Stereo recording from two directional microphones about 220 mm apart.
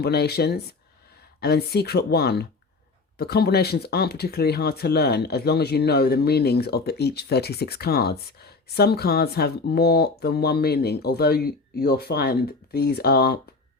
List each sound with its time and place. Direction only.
0.0 s speech: 45° left (ahead or behind)